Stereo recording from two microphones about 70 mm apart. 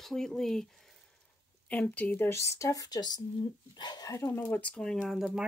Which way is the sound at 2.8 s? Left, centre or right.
Left.